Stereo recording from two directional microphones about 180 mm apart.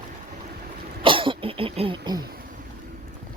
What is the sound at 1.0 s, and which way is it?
Cough, 30° right (ahead or behind).